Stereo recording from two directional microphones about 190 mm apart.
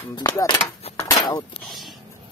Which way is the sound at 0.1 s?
20° left (ahead or behind).